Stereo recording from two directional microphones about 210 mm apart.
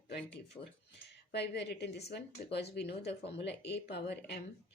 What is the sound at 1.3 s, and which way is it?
A woman's voice, 55° left (ahead or behind).